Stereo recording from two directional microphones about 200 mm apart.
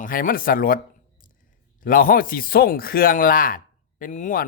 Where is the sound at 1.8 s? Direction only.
45° left (ahead or behind).